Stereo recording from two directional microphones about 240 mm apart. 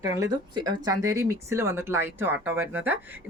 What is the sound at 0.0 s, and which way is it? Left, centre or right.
Speech, centre.